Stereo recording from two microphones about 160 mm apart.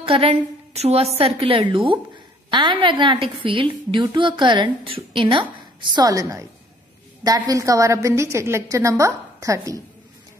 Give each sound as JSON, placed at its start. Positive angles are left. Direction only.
{"t": 0.0, "sound": "a woman's voice", "side_deg": -35}